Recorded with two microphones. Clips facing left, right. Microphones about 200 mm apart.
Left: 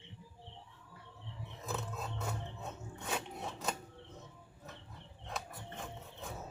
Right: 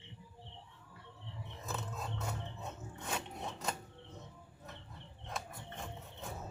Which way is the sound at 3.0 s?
Centre (ahead or behind).